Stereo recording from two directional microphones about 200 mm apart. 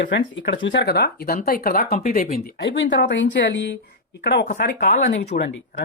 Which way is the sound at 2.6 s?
65° left (ahead or behind).